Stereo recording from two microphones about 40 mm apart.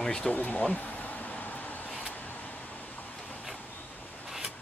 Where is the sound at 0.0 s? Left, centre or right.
Left.